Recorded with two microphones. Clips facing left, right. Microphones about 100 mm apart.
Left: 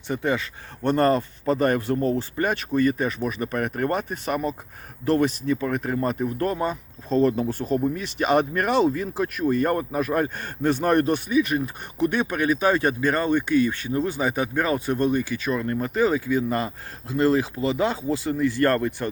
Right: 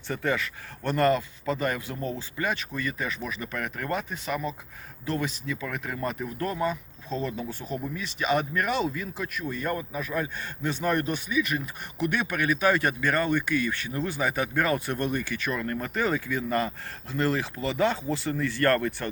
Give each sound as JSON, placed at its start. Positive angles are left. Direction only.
{"t": 0.1, "sound": "speech", "side_deg": 20}
{"t": 12.1, "sound": "speech", "side_deg": 25}